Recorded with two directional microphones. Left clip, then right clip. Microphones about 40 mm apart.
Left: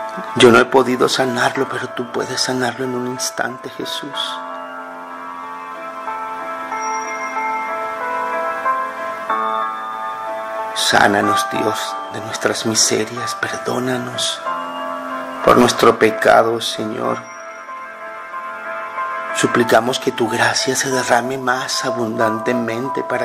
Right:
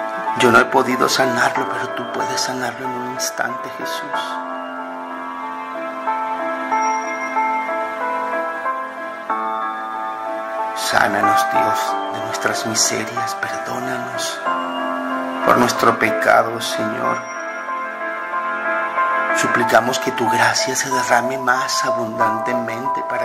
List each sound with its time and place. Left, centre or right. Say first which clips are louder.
0.4 s speech: left 3 dB; left
6.7 s music: right 3 dB; right
10.8 s speech: left 3 dB; left
15.5 s speech: left 3 dB; left
16.8 s speech: right 1 dB; right
18.7 s music: right 5 dB; right
19.3 s speech: left 3 dB; left